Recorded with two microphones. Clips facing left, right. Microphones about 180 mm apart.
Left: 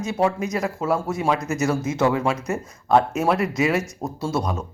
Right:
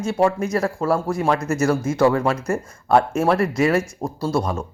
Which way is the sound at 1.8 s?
20° left (ahead or behind).